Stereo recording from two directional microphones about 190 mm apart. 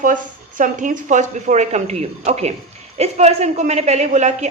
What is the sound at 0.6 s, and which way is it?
A woman's voice, 40° right (ahead or behind).